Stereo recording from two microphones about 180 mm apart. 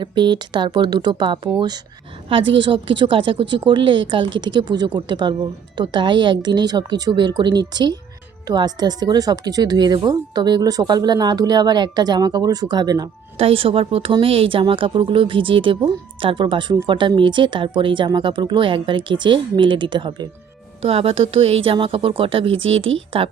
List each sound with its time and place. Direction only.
0.0 s speech: 25° right (ahead or behind)